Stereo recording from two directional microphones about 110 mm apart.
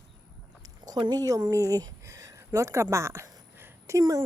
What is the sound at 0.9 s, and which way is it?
Speech, 40° right (ahead or behind).